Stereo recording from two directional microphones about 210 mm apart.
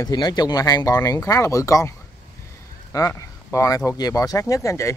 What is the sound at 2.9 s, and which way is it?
Speech, 15° left (ahead or behind).